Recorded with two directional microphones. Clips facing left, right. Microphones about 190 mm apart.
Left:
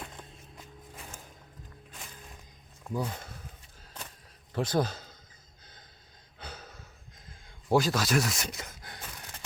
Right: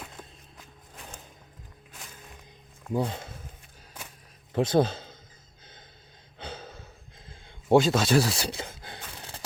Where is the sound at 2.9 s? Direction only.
25° right (ahead or behind).